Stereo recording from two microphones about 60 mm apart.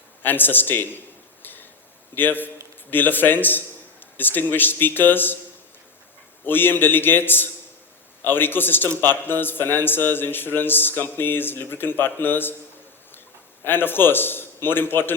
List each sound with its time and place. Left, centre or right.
0.2 s a man's voice: left
1.4 s tick-tock: left
2.1 s a man's voice: left
6.4 s a man's voice: left
13.7 s a man's voice: left